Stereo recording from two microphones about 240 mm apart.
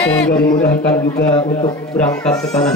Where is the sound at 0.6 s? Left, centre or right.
Left.